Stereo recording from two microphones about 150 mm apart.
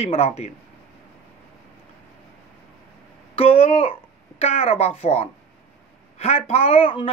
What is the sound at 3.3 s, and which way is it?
Speech, 40° left (ahead or behind).